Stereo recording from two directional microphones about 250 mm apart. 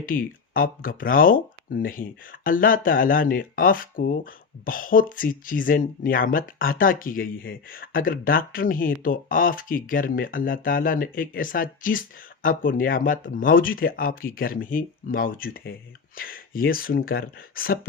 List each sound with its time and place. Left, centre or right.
0.0 s speech: left